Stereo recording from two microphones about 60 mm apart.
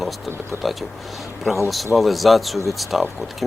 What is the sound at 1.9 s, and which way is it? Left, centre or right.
Speech, centre.